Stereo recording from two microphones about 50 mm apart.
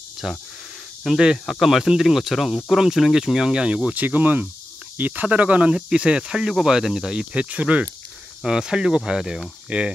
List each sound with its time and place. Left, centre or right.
0.2 s speech: centre
3.9 s speech: right; by 7.2 s centre
7.2 s speech: right
8.5 s speech: centre
9.7 s speech: right